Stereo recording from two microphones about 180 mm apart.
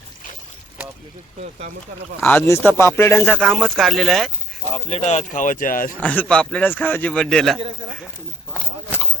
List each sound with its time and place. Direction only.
1.4 s speech: 45° right (ahead or behind)
2.2 s a man's voice: 10° left (ahead or behind)
4.9 s speech: 35° left (ahead or behind)
6.0 s a man's voice: 10° left (ahead or behind)